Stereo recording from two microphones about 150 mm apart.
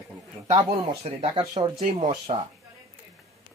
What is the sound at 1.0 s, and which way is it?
Speech, 40° right (ahead or behind).